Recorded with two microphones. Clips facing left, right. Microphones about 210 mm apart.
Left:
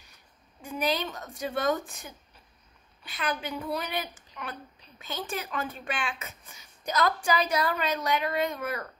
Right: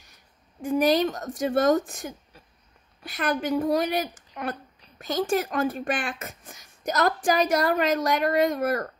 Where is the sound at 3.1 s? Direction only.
45° right (ahead or behind).